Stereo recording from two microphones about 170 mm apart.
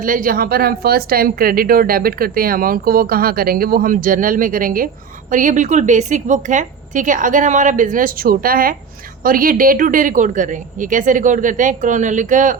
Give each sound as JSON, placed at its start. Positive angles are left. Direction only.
{"t": 0.0, "sound": "a woman's voice", "side_deg": -55}